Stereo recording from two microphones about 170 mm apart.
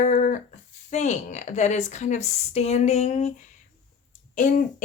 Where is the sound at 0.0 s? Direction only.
45° left (ahead or behind).